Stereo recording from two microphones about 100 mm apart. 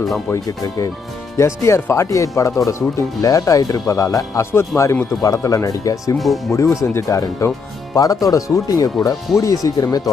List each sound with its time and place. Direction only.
1.4 s speech: 30° left (ahead or behind)
6.1 s speech: centre (ahead or behind)
6.5 s speech: 30° left (ahead or behind)